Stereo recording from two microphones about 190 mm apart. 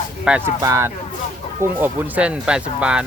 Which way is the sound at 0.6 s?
15° right (ahead or behind).